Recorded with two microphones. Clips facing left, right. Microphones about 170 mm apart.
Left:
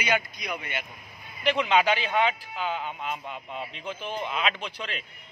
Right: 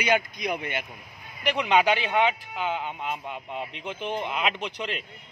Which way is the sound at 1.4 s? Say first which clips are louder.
Even; 15° right (ahead or behind).